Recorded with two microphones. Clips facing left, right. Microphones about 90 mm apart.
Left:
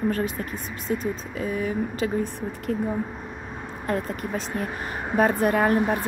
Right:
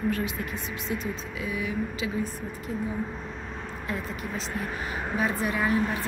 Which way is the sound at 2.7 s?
60° left (ahead or behind).